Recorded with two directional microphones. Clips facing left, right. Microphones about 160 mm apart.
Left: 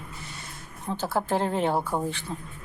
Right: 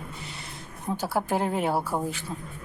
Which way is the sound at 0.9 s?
10° right (ahead or behind).